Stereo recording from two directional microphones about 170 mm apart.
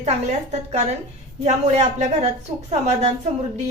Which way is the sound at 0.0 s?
45° right (ahead or behind).